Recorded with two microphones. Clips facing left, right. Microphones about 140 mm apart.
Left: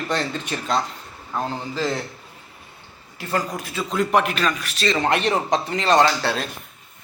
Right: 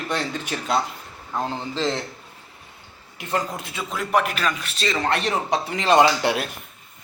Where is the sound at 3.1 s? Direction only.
20° right (ahead or behind).